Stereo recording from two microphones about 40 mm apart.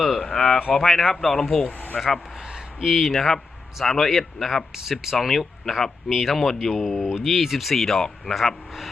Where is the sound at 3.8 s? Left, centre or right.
Centre.